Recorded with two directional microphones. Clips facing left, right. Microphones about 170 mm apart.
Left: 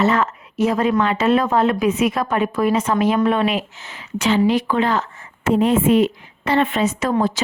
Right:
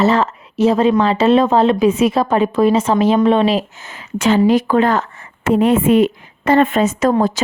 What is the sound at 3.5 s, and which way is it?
A woman's voice, 50° right (ahead or behind).